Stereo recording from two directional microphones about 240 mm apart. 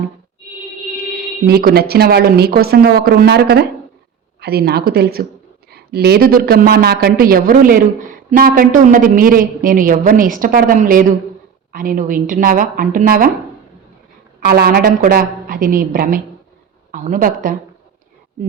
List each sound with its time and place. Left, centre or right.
1.5 s a woman's voice: right
14.4 s a woman's voice: right